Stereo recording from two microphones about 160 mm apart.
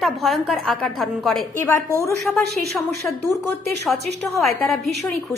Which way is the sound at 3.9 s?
5° left (ahead or behind).